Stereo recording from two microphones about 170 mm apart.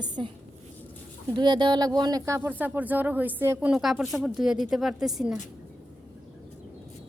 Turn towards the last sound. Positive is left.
turn(degrees=0)  # may be behind; listen again after turning